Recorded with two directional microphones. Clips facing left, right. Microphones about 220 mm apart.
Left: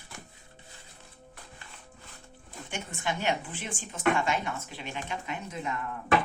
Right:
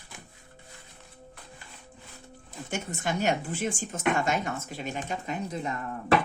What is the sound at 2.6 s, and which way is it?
Speech, 45° right (ahead or behind).